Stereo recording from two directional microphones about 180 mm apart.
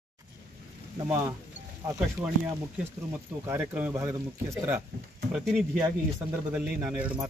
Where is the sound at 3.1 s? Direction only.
10° right (ahead or behind).